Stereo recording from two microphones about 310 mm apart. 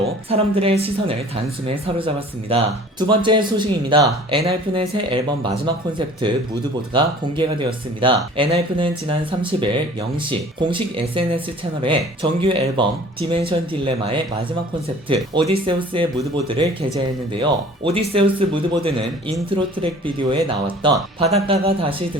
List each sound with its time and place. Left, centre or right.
0.0 s a woman's voice: centre
6.9 s speech: centre